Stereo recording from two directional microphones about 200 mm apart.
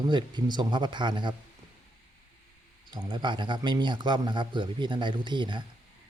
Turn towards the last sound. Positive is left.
turn(degrees=-25)  # may be behind; listen again after turning